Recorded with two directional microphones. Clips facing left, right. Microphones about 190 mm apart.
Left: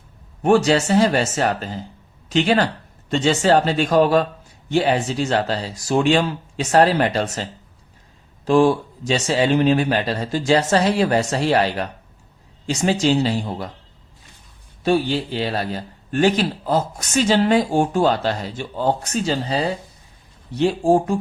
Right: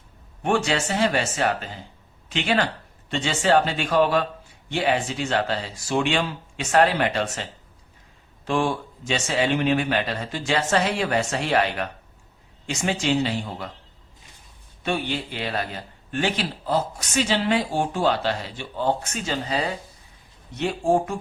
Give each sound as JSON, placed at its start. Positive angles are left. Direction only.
{"t": 0.4, "sound": "a man's voice", "side_deg": 40}
{"t": 8.4, "sound": "a man's voice", "side_deg": 35}
{"t": 14.8, "sound": "a man's voice", "side_deg": 35}